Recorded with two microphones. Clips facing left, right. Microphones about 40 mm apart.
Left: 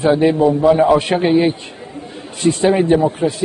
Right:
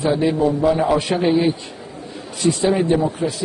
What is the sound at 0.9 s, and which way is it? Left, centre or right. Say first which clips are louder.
A man's voice: left 3 dB; left.